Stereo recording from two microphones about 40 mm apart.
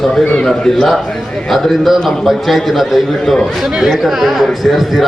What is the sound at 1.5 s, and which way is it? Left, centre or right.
A man's voice, centre.